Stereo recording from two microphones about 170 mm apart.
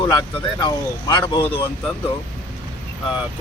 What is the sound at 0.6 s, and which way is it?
Speech, 25° left (ahead or behind).